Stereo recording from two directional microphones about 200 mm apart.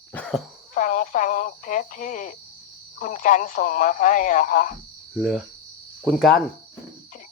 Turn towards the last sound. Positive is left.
turn(degrees=0)  # may be behind; listen again after turning